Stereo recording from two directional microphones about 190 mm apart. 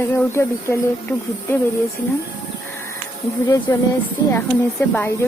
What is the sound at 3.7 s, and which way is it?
Speech, 20° left (ahead or behind).